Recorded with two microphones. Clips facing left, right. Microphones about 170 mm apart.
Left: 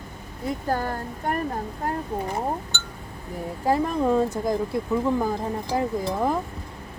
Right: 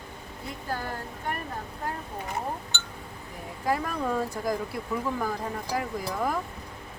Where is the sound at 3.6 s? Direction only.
25° left (ahead or behind).